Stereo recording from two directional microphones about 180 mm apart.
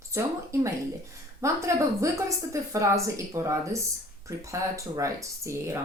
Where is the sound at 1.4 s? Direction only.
15° right (ahead or behind).